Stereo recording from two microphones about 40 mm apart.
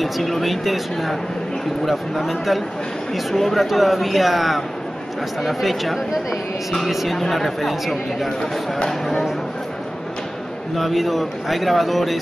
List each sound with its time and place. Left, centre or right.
0.0 s speech: centre
10.8 s speech: centre